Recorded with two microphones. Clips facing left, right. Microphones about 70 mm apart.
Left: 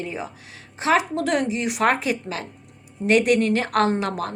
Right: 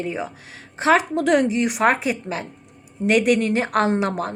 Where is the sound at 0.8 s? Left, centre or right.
Right.